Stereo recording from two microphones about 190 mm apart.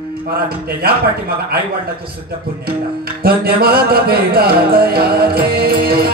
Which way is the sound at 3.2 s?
55° right (ahead or behind).